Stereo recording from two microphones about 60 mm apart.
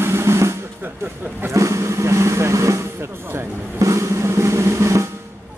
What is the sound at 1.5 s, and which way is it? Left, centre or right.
Vehicle, right.